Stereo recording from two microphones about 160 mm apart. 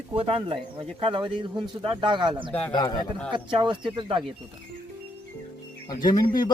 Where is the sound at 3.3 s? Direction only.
30° right (ahead or behind).